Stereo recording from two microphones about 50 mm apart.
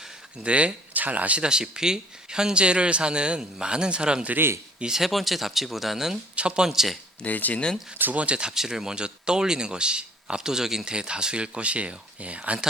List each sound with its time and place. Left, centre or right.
0.4 s speech: right
1.4 s speech: centre
4.4 s speech: right
4.8 s speech: centre
6.3 s speech: right
6.7 s speech: centre
7.3 s speech: left
7.9 s speech: right
8.2 s speech: right